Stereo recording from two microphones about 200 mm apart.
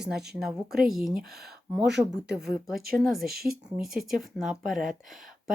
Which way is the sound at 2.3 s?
5° right (ahead or behind).